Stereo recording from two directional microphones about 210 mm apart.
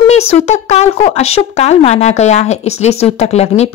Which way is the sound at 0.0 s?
30° left (ahead or behind).